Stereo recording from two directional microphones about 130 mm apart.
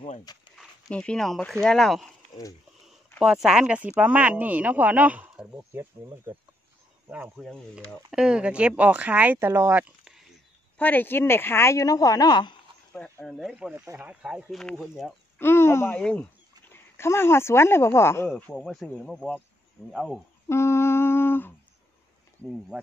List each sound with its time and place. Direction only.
0.3 s speech: 30° left (ahead or behind)
0.8 s speech: 10° left (ahead or behind)
3.2 s speech: 5° right (ahead or behind)
5.6 s speech: 20° right (ahead or behind)
7.1 s speech: 10° right (ahead or behind)
7.3 s speech: centre (ahead or behind); by 9.8 s 20° right (ahead or behind)
10.8 s speech: 15° left (ahead or behind); by 12.5 s 35° left (ahead or behind)
12.9 s speech: 10° left (ahead or behind)
13.3 s speech: centre (ahead or behind)
14.6 s speech: 5° left (ahead or behind)
15.3 s speech: 20° left (ahead or behind)
18.5 s speech: 5° left (ahead or behind)
20.4 s music: 20° left (ahead or behind)